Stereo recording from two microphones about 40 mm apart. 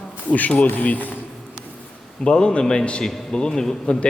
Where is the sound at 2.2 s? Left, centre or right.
Centre.